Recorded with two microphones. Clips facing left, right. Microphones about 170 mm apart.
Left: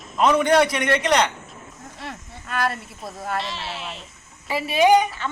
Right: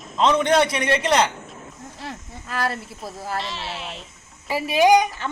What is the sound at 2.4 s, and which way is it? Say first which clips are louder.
Speech: left 1 dB; 30° right (ahead or behind).